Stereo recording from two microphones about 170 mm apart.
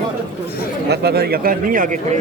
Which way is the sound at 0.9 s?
70° right (ahead or behind).